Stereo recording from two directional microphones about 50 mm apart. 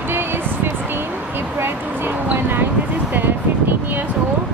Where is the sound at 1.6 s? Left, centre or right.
Right.